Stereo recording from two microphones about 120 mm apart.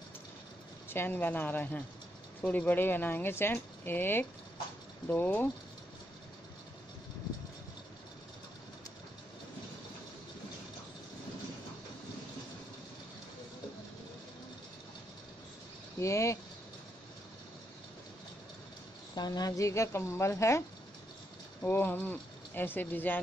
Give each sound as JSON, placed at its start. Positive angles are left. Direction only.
{"t": 0.8, "sound": "speech", "side_deg": 15}
{"t": 16.0, "sound": "a woman's voice", "side_deg": 25}
{"t": 19.1, "sound": "a woman's voice", "side_deg": 35}